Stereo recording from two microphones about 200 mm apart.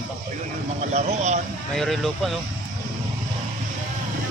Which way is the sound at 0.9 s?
35° right (ahead or behind).